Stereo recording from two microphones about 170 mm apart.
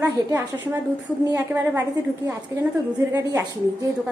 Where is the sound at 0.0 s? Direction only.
20° right (ahead or behind).